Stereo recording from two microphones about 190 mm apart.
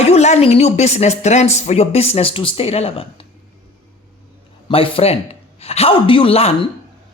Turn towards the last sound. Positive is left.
turn(degrees=30)  # may be behind; listen again after turning